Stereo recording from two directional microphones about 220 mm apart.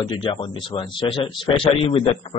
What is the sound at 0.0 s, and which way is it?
Speech, 20° left (ahead or behind).